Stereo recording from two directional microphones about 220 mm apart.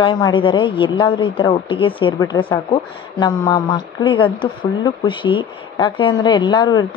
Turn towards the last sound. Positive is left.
turn(degrees=20)  # may be behind; listen again after turning